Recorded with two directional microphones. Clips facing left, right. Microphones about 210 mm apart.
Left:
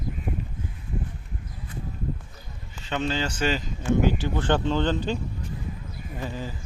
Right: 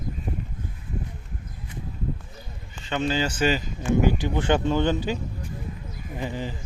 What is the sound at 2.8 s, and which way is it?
Speech, centre (ahead or behind).